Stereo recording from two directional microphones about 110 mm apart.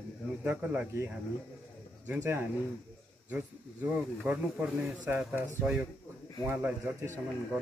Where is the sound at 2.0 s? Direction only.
20° right (ahead or behind).